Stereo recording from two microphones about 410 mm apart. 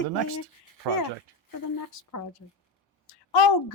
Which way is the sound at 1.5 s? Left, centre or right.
Left.